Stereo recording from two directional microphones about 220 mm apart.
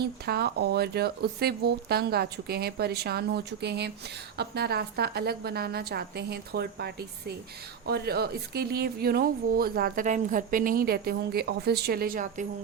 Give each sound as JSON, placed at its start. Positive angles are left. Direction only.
{"t": 0.3, "sound": "speech", "side_deg": -45}